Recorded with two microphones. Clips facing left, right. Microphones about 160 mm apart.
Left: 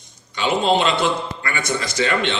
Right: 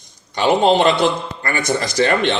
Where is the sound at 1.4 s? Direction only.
40° right (ahead or behind).